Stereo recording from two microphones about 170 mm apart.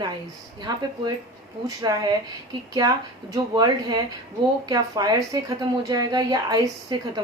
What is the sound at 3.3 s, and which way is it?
Speech, 20° right (ahead or behind).